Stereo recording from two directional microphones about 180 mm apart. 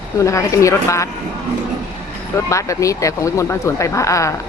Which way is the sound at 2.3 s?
15° left (ahead or behind).